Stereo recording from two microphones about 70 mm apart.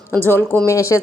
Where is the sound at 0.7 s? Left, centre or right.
Left.